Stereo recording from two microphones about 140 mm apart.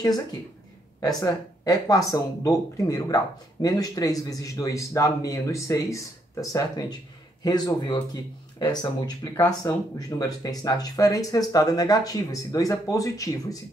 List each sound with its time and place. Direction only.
0.0 s speech: 25° left (ahead or behind)